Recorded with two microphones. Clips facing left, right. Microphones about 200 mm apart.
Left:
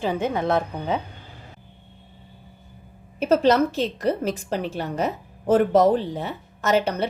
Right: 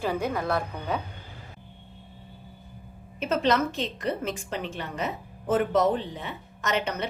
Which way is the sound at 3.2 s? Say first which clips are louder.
Left 6 dB; 40° left (ahead or behind).